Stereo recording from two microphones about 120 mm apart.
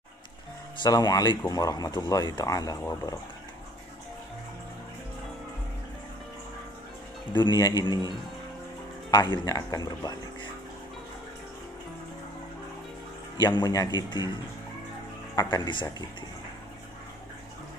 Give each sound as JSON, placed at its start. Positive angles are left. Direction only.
{"t": 0.8, "sound": "speech", "side_deg": 30}
{"t": 7.3, "sound": "speech", "side_deg": 35}
{"t": 13.4, "sound": "speech", "side_deg": 35}
{"t": 15.3, "sound": "speech", "side_deg": 35}